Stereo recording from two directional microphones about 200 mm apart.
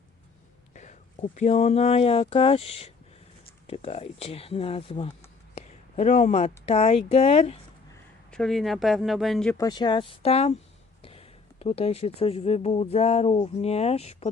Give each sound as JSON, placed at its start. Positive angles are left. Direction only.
{"t": 0.7, "sound": "speech", "side_deg": 35}
{"t": 5.5, "sound": "a sound", "side_deg": 35}
{"t": 6.7, "sound": "speech", "side_deg": 30}
{"t": 8.3, "sound": "speech", "side_deg": 0}
{"t": 9.6, "sound": "speech", "side_deg": 20}